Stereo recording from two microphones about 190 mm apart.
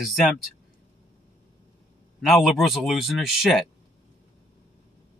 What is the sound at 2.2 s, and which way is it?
Speech, centre (ahead or behind).